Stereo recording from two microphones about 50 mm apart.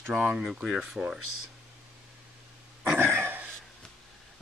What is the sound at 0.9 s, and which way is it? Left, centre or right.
Speech, right.